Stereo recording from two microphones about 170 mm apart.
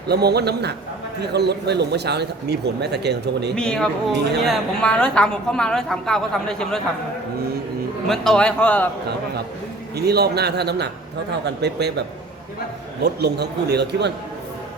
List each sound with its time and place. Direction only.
0.1 s speech: 75° right (ahead or behind)
3.5 s a woman's voice: 5° left (ahead or behind)
8.0 s a woman's voice: centre (ahead or behind)
10.0 s speech: 70° right (ahead or behind)